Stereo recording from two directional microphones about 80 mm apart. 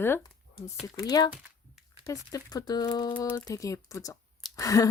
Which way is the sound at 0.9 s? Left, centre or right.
Left.